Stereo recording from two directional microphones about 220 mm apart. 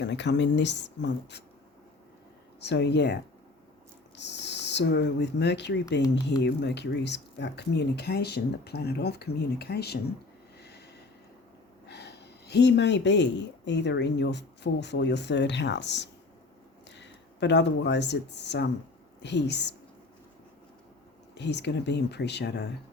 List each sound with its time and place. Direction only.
0.0 s speech: 50° left (ahead or behind)
2.6 s speech: 50° left (ahead or behind)
4.2 s speech: 50° left (ahead or behind)
10.6 s a sound: 50° left (ahead or behind)
11.9 s a sound: 50° left (ahead or behind)
13.7 s speech: 50° left (ahead or behind)
21.3 s speech: 50° left (ahead or behind)